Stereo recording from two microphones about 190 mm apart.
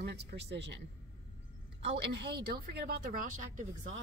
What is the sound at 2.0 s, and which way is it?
Speech, 60° right (ahead or behind).